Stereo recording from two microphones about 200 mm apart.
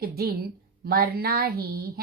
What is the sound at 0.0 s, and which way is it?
A woman's voice, 50° right (ahead or behind).